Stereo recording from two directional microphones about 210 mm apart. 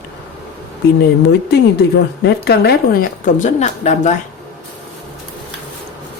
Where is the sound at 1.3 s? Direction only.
50° left (ahead or behind); by 4.1 s 35° left (ahead or behind).